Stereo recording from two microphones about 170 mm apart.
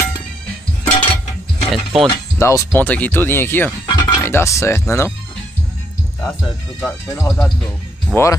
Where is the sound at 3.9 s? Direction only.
25° left (ahead or behind).